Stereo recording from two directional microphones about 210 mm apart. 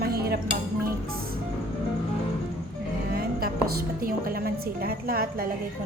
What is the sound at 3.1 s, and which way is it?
A woman's voice, 45° right (ahead or behind).